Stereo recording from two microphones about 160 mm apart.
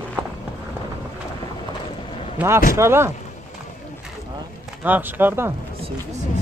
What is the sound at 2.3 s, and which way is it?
Speech, 15° right (ahead or behind).